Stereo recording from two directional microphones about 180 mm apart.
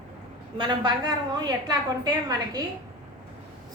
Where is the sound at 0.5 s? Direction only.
25° right (ahead or behind).